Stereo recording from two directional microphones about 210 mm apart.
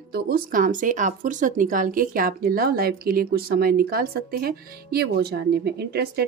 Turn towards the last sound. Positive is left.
turn(degrees=-50)  # may be behind; listen again after turning